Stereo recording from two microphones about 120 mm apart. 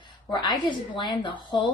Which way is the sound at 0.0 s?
40° left (ahead or behind).